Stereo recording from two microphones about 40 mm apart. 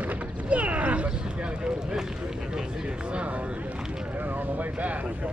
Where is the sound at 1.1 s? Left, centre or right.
Right.